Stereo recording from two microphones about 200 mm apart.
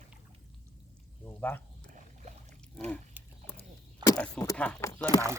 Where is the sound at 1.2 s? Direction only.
10° left (ahead or behind).